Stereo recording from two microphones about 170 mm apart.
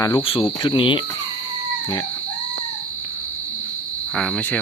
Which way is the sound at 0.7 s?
30° left (ahead or behind).